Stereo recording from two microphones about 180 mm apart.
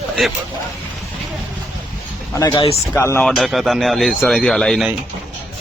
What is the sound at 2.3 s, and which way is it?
Speech, 20° left (ahead or behind).